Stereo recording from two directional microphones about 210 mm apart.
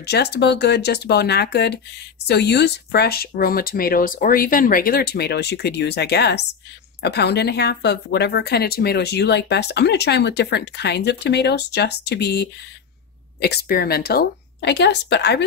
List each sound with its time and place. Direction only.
0.0 s speech: 50° left (ahead or behind)